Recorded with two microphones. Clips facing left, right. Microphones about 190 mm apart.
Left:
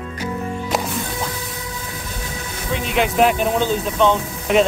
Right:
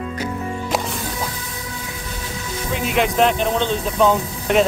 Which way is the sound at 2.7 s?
Centre (ahead or behind).